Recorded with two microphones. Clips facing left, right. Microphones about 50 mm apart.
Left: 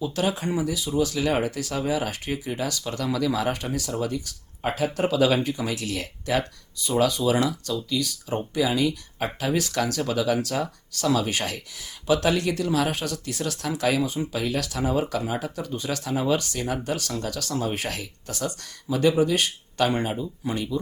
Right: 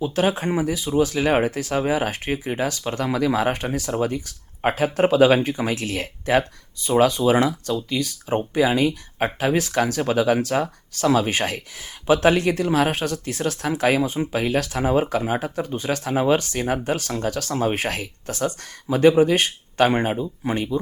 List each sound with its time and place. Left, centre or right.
0.0 s speech: right